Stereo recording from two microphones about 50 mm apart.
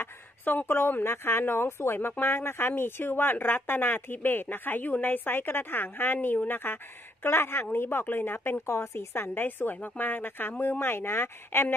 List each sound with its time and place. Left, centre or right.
0.7 s speech: left
9.1 s speech: left